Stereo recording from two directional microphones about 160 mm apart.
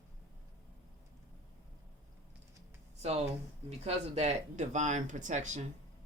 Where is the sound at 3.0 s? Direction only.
40° right (ahead or behind).